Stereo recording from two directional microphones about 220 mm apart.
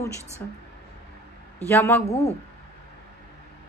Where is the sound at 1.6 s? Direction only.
10° left (ahead or behind).